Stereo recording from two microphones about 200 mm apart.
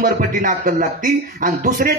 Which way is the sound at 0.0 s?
45° right (ahead or behind).